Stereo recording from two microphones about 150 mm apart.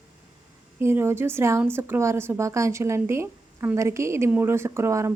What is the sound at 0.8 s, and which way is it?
A woman's voice, 15° right (ahead or behind).